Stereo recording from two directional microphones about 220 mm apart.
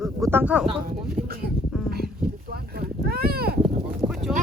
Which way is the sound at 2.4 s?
45° right (ahead or behind).